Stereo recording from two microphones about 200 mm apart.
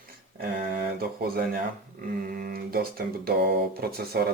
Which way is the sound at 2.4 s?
45° right (ahead or behind).